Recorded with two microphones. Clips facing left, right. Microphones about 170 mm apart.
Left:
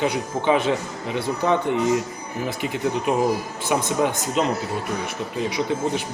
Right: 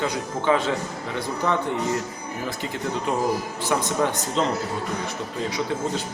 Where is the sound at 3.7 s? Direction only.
15° left (ahead or behind).